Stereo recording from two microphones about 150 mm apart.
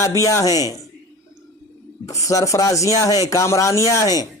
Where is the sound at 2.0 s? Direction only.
20° left (ahead or behind).